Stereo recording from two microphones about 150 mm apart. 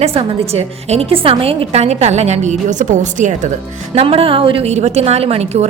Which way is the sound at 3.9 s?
40° right (ahead or behind).